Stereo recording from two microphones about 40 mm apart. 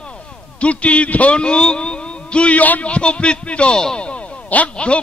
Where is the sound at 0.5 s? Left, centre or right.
Left.